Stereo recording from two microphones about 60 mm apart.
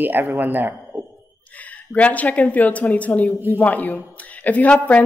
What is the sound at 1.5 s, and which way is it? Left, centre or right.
Speech, left.